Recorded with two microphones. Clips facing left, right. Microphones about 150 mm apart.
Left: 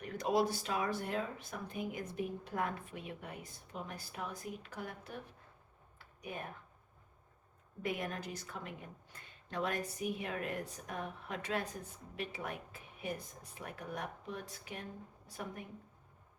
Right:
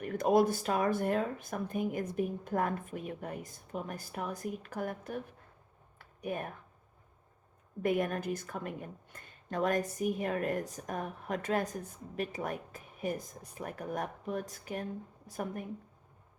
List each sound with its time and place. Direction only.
0.0 s speech: 50° right (ahead or behind)
6.2 s speech: 50° right (ahead or behind)
7.8 s speech: 50° right (ahead or behind)